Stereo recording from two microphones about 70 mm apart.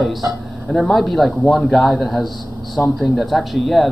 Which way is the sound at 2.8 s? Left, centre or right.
Centre.